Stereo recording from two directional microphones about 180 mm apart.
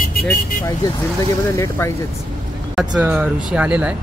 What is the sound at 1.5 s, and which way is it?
Speech, 15° left (ahead or behind).